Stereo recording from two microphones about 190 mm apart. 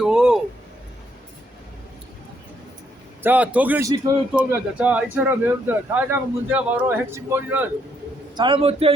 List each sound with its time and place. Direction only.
0.0 s a sound: 5° right (ahead or behind)
3.2 s speech: 10° right (ahead or behind)
8.4 s a man's voice: 25° right (ahead or behind)